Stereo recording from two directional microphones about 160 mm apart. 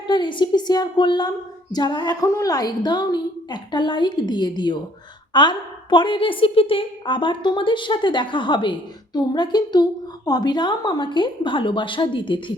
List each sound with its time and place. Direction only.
0.1 s a woman's voice: 30° left (ahead or behind)